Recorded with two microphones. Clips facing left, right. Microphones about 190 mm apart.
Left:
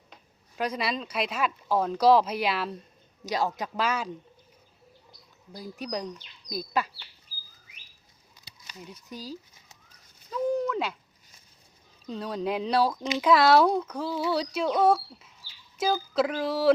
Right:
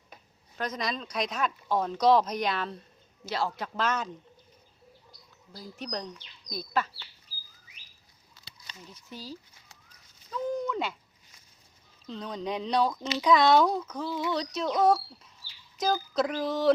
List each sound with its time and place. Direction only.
0.5 s speech: 10° left (ahead or behind)
3.2 s speech: 15° left (ahead or behind)
5.5 s speech: 10° left (ahead or behind)
8.4 s a sound: 15° left (ahead or behind)
12.0 s speech: 5° left (ahead or behind)
14.1 s speech: 20° left (ahead or behind)
14.3 s speech: 10° left (ahead or behind)